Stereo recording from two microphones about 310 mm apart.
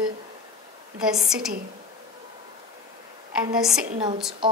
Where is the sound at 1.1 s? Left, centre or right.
Centre.